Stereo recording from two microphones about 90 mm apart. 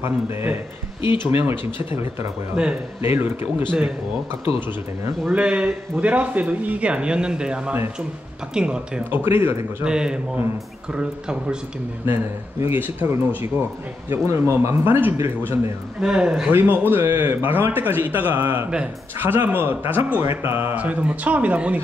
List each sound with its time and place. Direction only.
0.0 s speech: 25° right (ahead or behind)
1.0 s speech: 65° left (ahead or behind)
1.4 s speech: 25° right (ahead or behind)
2.5 s speech: 10° right (ahead or behind)
3.0 s speech: 25° right (ahead or behind)
5.3 s speech: 15° right (ahead or behind)
9.1 s speech: 25° right (ahead or behind)
9.8 s speech: 10° right (ahead or behind)
12.1 s speech: 25° right (ahead or behind)
13.6 s speech: 30° right (ahead or behind)
16.0 s speech: 10° right (ahead or behind)
16.5 s speech: 25° right (ahead or behind)